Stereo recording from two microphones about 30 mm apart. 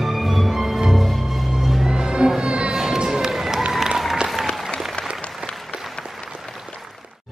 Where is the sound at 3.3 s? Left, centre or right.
Centre.